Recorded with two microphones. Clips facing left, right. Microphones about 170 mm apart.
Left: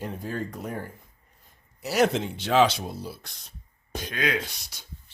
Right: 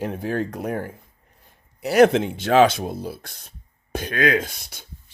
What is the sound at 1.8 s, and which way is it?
Speech, 60° right (ahead or behind).